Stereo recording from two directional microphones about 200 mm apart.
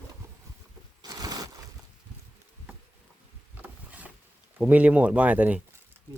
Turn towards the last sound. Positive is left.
turn(degrees=-10)  # may be behind; listen again after turning